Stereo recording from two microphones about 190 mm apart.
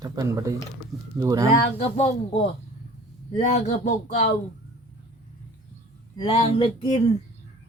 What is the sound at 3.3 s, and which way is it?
Speech, 35° left (ahead or behind).